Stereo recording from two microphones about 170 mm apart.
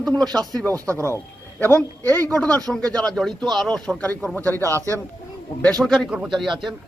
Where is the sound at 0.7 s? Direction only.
15° right (ahead or behind).